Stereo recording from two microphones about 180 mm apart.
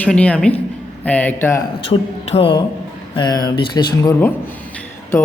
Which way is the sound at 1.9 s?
30° left (ahead or behind).